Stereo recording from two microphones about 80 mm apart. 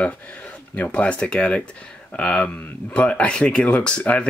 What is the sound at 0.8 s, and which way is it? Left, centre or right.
Speech, centre.